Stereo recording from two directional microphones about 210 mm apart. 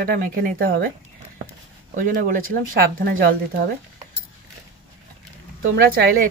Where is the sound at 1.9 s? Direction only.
40° right (ahead or behind).